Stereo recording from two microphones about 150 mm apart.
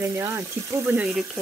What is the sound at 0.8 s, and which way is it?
Speech, 5° right (ahead or behind).